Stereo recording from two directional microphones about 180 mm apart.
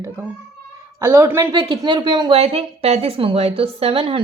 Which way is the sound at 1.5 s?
25° right (ahead or behind).